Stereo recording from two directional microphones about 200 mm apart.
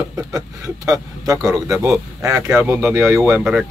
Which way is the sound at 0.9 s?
15° right (ahead or behind).